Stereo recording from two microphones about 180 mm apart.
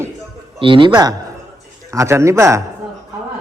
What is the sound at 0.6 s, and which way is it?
A man's voice, 30° right (ahead or behind).